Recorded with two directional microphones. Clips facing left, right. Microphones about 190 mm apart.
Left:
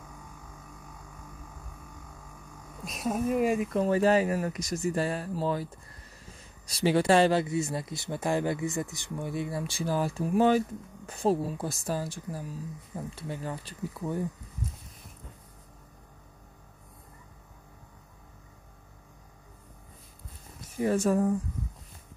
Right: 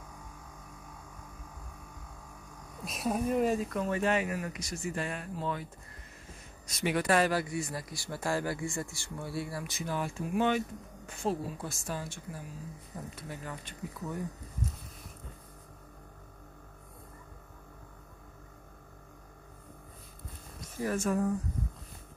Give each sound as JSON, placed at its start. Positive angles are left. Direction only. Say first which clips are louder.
{"t": 2.8, "sound": "speech", "louder": "left 2 dB", "side_deg": 0}
{"t": 3.7, "sound": "speech", "louder": "left 6 dB", "side_deg": 35}
{"t": 6.7, "sound": "speech", "louder": "left 5 dB", "side_deg": 30}
{"t": 20.6, "sound": "speech", "louder": "left 6 dB", "side_deg": 30}